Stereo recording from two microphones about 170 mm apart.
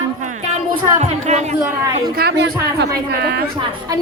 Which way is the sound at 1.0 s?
40° right (ahead or behind).